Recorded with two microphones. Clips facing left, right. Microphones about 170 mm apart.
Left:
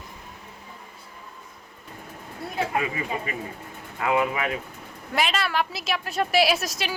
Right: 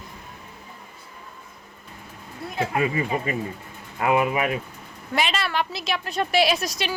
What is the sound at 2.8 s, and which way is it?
Speech, 30° right (ahead or behind).